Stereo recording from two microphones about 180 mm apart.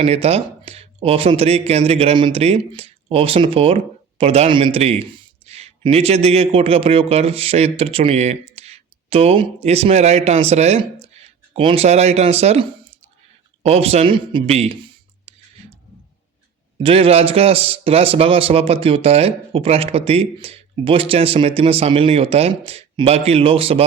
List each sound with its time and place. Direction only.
0.0 s a man's voice: 35° right (ahead or behind)
16.8 s a man's voice: 30° right (ahead or behind)